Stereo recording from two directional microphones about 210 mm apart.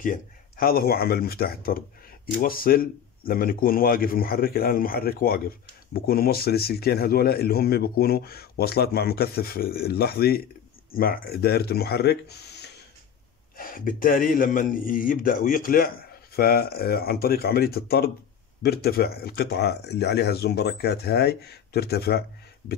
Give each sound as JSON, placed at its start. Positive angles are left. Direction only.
{"t": 0.0, "sound": "speech", "side_deg": 40}
{"t": 13.6, "sound": "a man's voice", "side_deg": 40}